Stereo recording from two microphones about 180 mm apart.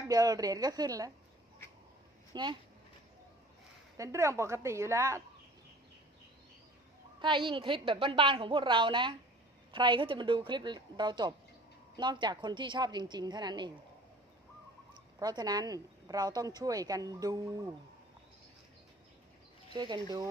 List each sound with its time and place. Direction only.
0.1 s speech: 20° right (ahead or behind)
2.3 s speech: 25° right (ahead or behind)
3.9 s a woman's voice: 15° right (ahead or behind)
7.2 s speech: 25° right (ahead or behind)
15.1 s speech: 20° right (ahead or behind)
19.7 s speech: 25° right (ahead or behind)